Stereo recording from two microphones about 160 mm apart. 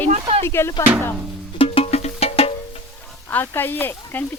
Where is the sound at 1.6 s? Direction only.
40° left (ahead or behind).